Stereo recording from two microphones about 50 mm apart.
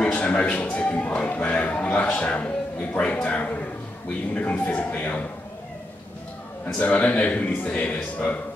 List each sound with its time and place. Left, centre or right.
0.0 s speech: left
6.6 s speech: left